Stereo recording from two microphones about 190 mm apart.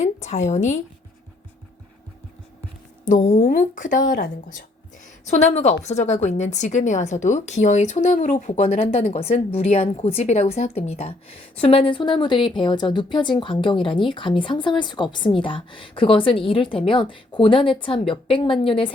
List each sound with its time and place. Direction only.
0.0 s speech: 40° left (ahead or behind)
3.0 s a woman's voice: 40° left (ahead or behind)